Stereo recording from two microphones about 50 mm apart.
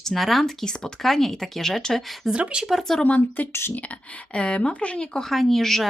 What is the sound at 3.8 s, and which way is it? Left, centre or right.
Speech, left.